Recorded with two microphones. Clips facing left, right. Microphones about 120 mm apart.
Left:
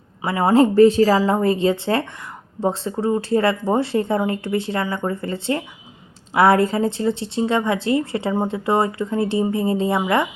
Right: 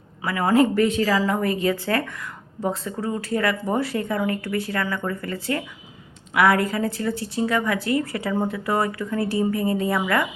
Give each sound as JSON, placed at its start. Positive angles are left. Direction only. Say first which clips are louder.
{"t": 0.2, "sound": "a woman's voice", "louder": "left 3 dB", "side_deg": 25}